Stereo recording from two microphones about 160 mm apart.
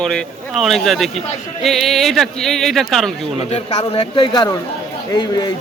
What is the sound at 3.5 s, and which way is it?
A man's voice, 35° left (ahead or behind).